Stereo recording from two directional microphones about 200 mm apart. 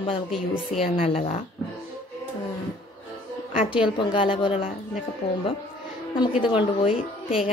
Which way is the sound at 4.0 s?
25° left (ahead or behind).